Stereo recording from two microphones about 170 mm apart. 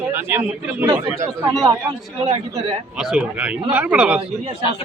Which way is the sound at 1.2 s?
5° left (ahead or behind).